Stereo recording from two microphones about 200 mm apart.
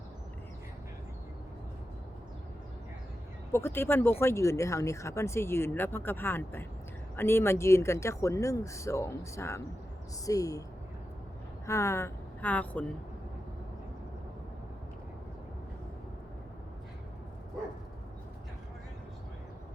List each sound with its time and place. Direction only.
3.5 s speech: 10° left (ahead or behind)
11.6 s speech: 15° left (ahead or behind)